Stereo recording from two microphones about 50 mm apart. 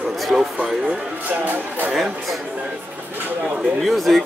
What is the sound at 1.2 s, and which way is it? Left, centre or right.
Speech, right.